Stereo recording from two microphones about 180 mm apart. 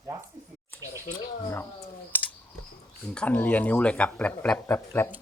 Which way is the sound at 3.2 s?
5° left (ahead or behind).